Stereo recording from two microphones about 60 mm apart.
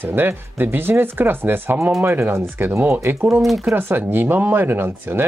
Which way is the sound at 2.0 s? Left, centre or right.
Right.